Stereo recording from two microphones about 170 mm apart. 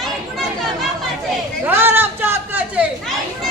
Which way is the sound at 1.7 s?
15° right (ahead or behind).